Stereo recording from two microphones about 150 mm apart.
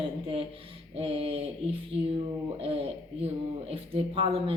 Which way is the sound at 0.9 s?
40° right (ahead or behind).